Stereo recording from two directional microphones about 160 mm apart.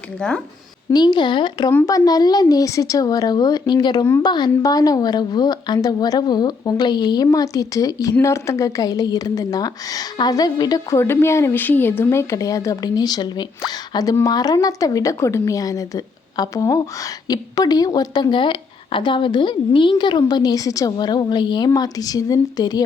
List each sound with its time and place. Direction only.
0.9 s a woman's voice: 25° left (ahead or behind)